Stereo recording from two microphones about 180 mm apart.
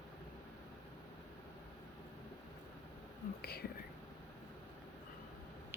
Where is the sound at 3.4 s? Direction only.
60° left (ahead or behind).